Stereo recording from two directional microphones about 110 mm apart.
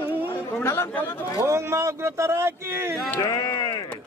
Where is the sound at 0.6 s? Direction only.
25° left (ahead or behind).